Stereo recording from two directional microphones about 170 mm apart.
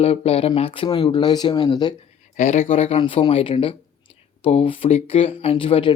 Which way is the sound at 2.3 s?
40° left (ahead or behind).